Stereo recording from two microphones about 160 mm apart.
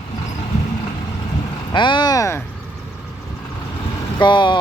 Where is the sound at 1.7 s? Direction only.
30° left (ahead or behind).